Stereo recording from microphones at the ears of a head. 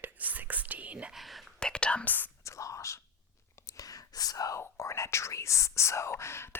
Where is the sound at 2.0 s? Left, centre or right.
Left.